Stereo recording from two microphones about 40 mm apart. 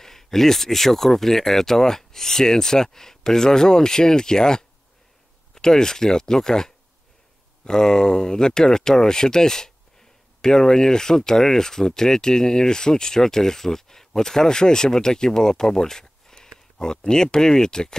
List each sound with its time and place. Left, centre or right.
0.0 s speech: centre